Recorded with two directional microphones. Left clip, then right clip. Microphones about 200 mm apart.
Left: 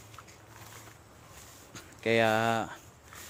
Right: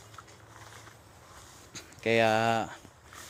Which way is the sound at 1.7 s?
5° right (ahead or behind).